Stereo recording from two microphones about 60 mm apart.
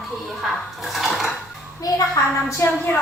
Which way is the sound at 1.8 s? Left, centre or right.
Left.